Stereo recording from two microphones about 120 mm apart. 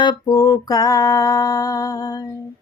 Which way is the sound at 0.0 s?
35° left (ahead or behind).